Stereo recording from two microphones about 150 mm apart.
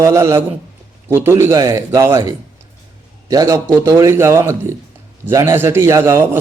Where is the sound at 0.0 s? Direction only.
20° right (ahead or behind).